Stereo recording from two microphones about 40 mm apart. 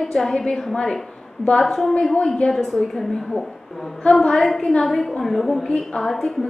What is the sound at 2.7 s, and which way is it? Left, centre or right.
A woman's voice, centre.